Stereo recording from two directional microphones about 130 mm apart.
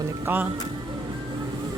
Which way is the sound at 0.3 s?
15° right (ahead or behind).